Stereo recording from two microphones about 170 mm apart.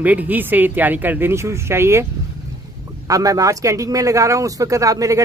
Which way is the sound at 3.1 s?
20° right (ahead or behind).